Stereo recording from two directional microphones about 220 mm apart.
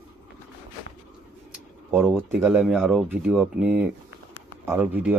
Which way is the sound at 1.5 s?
5° right (ahead or behind).